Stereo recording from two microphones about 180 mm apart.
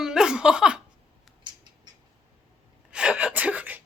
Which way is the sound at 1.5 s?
25° right (ahead or behind).